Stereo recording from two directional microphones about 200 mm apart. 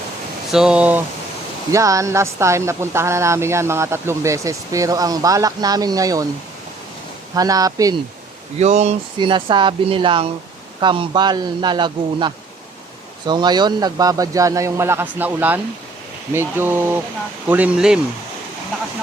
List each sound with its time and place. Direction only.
0.5 s speech: 5° right (ahead or behind)
7.3 s speech: 20° right (ahead or behind)
8.5 s speech: 35° right (ahead or behind); by 18.0 s 5° right (ahead or behind)